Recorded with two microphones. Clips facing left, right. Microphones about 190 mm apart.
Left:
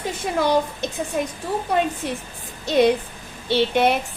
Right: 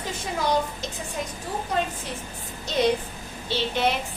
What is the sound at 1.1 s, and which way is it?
Speech, 60° left (ahead or behind).